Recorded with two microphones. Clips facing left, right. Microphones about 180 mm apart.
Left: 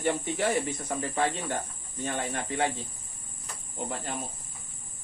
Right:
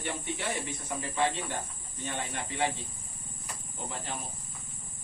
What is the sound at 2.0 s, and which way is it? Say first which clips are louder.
Speech: left 5 dB; 45° left (ahead or behind).